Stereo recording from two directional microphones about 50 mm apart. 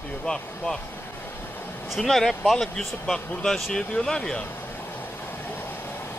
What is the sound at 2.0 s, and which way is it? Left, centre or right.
Speech, centre.